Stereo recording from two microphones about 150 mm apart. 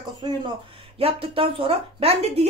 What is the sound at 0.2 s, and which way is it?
Speech, 30° right (ahead or behind).